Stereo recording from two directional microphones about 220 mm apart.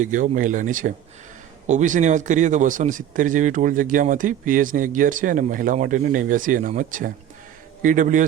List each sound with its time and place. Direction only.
0.0 s a man's voice: 35° right (ahead or behind)